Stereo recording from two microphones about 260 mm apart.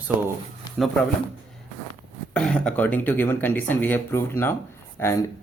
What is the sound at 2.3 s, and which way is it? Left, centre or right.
Speech, centre.